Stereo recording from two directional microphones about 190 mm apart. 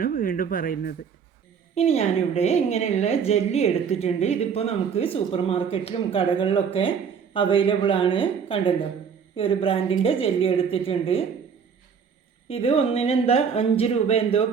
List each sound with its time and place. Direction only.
0.0 s speech: 45° left (ahead or behind)
1.7 s a woman's voice: 35° left (ahead or behind)
12.5 s a woman's voice: 30° left (ahead or behind)